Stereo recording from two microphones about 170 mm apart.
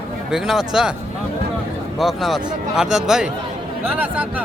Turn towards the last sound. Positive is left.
turn(degrees=-10)  # may be behind; listen again after turning